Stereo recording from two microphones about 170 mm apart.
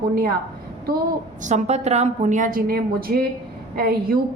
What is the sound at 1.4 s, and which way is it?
A woman's voice, 40° right (ahead or behind).